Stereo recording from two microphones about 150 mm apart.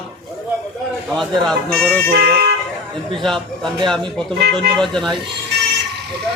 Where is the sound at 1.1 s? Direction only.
Centre (ahead or behind).